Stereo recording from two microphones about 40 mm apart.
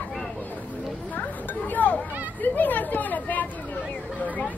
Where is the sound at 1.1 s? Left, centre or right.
Left.